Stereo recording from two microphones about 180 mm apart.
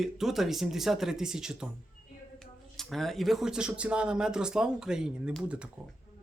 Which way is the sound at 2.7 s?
Centre (ahead or behind).